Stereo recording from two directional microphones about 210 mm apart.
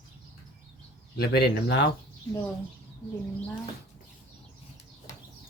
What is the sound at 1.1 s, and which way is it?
Speech, 50° left (ahead or behind).